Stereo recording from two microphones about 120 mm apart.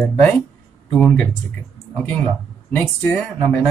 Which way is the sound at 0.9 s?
10° left (ahead or behind).